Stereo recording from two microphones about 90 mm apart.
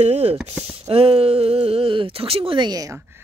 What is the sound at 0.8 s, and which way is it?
Speech, 90° right.